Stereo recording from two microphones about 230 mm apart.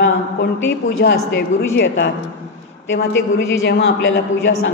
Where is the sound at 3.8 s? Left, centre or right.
Left.